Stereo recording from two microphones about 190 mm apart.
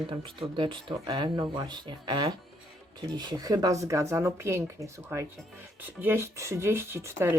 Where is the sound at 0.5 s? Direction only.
25° right (ahead or behind).